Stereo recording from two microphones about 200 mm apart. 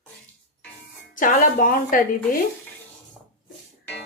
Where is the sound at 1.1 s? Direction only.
40° left (ahead or behind).